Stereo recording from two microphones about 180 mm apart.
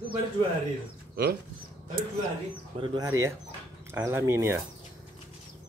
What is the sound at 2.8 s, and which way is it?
Speech, 25° right (ahead or behind).